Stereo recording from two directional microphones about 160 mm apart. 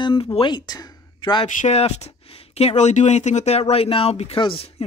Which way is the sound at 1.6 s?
40° left (ahead or behind).